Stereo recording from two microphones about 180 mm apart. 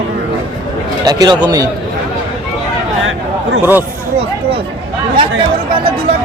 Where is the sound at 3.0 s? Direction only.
90° right.